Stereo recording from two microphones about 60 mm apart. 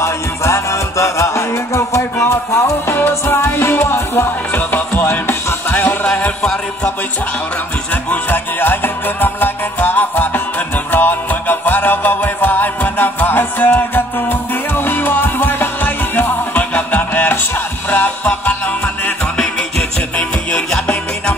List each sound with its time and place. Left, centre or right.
0.0 s music: left
4.5 s music: left
6.4 s music: centre
7.9 s music: left
20.7 s music: centre